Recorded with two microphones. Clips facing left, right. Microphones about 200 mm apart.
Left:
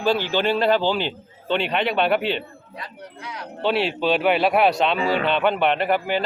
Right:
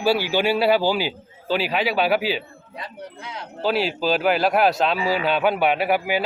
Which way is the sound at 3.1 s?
25° right (ahead or behind).